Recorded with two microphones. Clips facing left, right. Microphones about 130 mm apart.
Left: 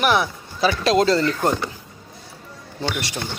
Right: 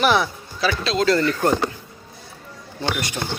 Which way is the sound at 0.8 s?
40° left (ahead or behind).